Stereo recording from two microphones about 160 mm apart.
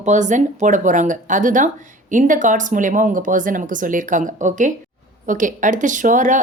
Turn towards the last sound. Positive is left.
turn(degrees=-50)  # may be behind; listen again after turning